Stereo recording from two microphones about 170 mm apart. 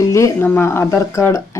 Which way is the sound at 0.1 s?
15° left (ahead or behind).